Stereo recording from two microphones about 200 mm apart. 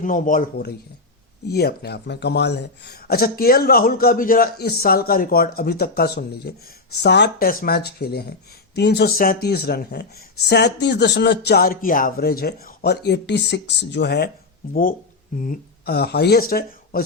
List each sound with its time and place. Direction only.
0.0 s speech: 40° left (ahead or behind)
1.5 s speech: 55° left (ahead or behind)
14.7 s speech: 45° left (ahead or behind)